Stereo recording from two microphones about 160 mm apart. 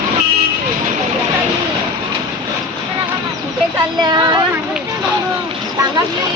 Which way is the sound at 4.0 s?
25° right (ahead or behind).